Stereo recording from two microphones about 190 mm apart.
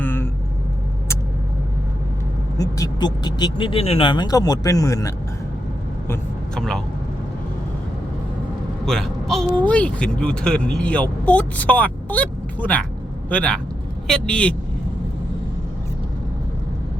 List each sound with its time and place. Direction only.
0.0 s vehicle: 10° left (ahead or behind)
2.6 s speech: 20° left (ahead or behind)
6.1 s speech: 5° left (ahead or behind)
8.9 s speech: centre (ahead or behind)